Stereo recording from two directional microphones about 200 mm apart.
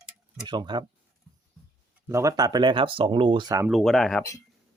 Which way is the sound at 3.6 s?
Centre (ahead or behind).